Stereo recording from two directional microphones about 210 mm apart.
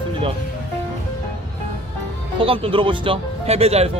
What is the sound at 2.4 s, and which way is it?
Speech, 25° right (ahead or behind).